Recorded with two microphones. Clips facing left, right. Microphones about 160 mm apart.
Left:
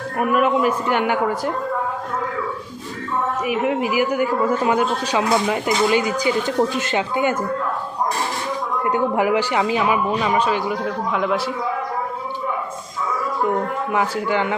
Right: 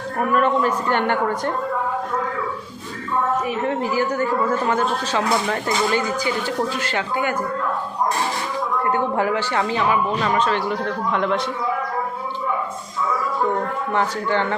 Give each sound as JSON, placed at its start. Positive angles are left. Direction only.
{"t": 0.2, "sound": "a man's voice", "side_deg": 10}
{"t": 3.4, "sound": "a man's voice", "side_deg": 10}
{"t": 8.8, "sound": "a man's voice", "side_deg": 15}
{"t": 13.9, "sound": "a man's voice", "side_deg": 10}